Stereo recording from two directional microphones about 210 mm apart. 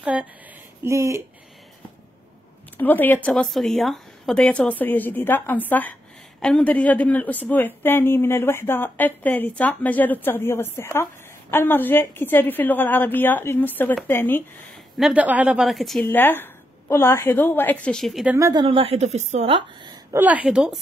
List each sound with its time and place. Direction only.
0.0 s a woman's voice: 5° right (ahead or behind)
2.8 s speech: 10° left (ahead or behind)
15.0 s speech: 5° right (ahead or behind)
18.5 s a woman's voice: 20° right (ahead or behind); by 20.8 s 5° right (ahead or behind)